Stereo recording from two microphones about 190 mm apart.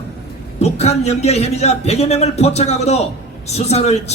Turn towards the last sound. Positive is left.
turn(degrees=35)  # may be behind; listen again after turning